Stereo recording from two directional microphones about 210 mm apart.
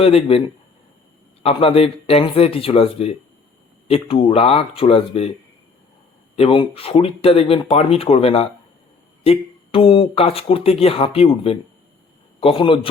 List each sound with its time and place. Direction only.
0.0 s speech: 30° left (ahead or behind)
6.3 s speech: 25° left (ahead or behind)